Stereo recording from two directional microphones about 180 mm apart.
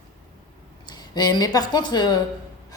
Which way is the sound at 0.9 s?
25° left (ahead or behind).